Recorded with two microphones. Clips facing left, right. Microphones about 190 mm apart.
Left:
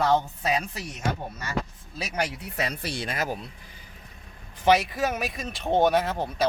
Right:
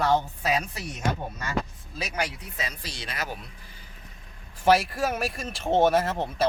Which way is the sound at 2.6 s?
60° left (ahead or behind).